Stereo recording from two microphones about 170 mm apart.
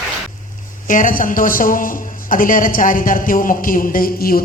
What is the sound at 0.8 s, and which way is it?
A man's voice, 50° left (ahead or behind).